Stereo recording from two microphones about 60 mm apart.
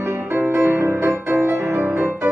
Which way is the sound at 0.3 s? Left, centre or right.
Right.